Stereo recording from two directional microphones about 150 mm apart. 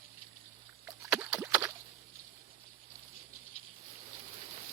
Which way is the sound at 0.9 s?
5° right (ahead or behind).